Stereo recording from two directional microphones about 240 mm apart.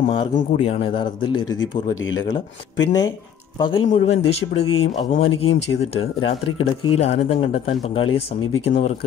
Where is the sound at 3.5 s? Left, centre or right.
Centre.